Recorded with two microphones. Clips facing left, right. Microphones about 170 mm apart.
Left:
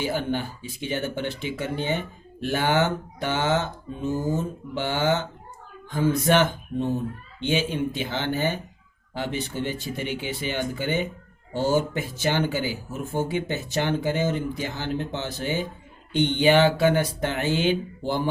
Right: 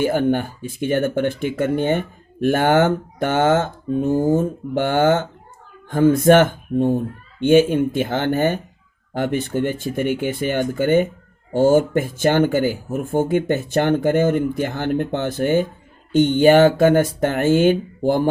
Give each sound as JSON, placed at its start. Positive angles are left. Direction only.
{"t": 0.0, "sound": "speech", "side_deg": -50}